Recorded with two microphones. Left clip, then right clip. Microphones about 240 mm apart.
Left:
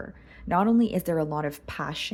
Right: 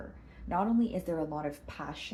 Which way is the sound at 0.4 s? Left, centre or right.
Left.